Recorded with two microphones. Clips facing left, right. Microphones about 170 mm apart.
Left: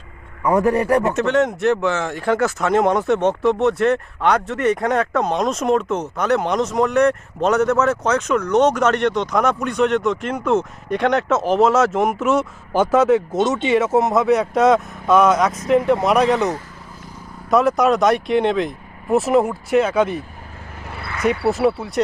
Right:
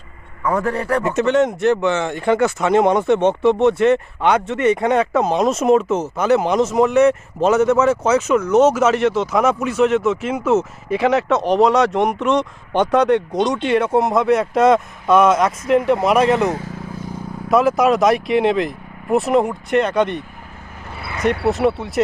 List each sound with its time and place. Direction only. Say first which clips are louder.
0.4 s a man's voice: left 3 dB; 15° left (ahead or behind)
1.0 s speech: right 1 dB; centre (ahead or behind)
17.5 s speech: right 1 dB; centre (ahead or behind)
21.2 s speech: even; centre (ahead or behind)